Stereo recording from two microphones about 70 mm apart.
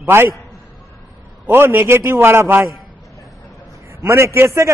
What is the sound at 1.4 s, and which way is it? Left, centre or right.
A man's voice, right.